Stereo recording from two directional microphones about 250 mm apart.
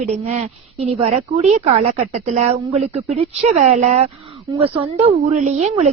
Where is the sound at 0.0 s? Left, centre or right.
Right.